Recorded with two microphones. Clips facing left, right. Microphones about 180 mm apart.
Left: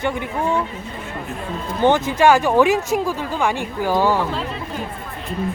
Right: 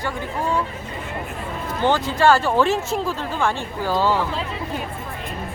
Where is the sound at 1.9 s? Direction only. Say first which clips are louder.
Left 3 dB; 20° left (ahead or behind).